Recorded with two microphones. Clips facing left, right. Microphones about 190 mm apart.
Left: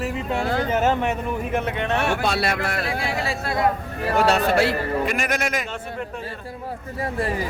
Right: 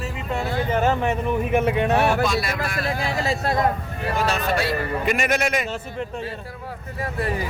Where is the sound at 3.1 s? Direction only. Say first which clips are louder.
Right 2 dB; 40° right (ahead or behind).